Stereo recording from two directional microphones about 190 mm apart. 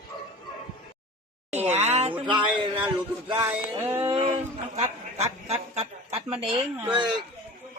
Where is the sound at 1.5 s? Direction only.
35° right (ahead or behind).